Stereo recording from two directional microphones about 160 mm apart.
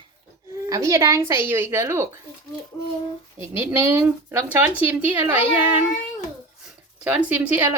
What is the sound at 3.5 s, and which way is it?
Speech, 15° right (ahead or behind).